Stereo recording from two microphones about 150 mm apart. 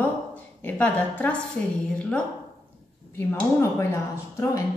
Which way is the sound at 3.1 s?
15° left (ahead or behind).